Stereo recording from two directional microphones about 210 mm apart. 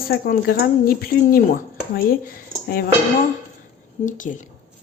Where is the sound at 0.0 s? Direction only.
45° left (ahead or behind).